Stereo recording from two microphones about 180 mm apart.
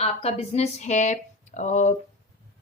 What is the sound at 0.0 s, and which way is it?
Speech, 35° left (ahead or behind).